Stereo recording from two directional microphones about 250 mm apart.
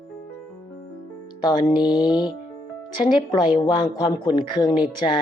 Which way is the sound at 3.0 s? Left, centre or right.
Centre.